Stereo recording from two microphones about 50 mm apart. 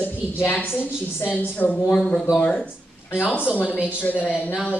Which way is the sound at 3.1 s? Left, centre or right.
Left.